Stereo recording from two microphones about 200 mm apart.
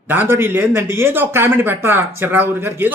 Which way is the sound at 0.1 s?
10° right (ahead or behind).